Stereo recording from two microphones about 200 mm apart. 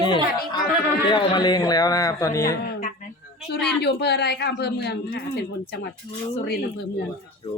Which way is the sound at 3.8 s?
55° left (ahead or behind).